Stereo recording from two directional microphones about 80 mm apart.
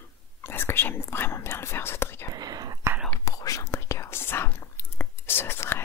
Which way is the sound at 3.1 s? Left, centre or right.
Left.